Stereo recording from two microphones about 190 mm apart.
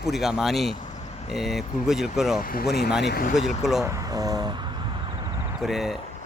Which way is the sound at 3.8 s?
15° right (ahead or behind).